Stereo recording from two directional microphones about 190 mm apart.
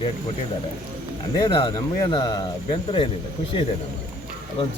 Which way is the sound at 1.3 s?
20° left (ahead or behind).